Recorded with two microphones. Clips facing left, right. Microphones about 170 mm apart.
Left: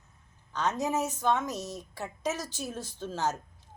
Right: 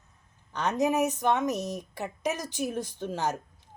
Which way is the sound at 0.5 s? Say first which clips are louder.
Right 3 dB; 15° right (ahead or behind).